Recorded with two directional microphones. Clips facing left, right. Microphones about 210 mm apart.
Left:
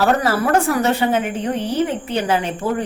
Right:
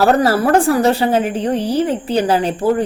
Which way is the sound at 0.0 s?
35° right (ahead or behind).